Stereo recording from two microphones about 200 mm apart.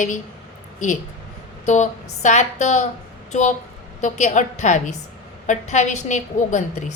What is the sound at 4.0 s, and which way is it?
A woman's voice, 35° left (ahead or behind).